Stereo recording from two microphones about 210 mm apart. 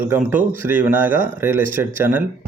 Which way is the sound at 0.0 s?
10° right (ahead or behind).